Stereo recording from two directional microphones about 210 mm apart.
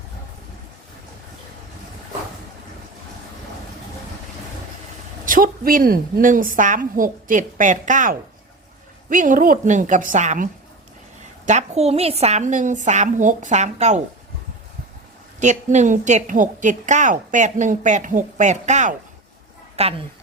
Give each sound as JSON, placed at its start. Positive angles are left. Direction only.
{"t": 5.2, "sound": "a woman's voice", "side_deg": -40}
{"t": 15.4, "sound": "a woman's voice", "side_deg": -35}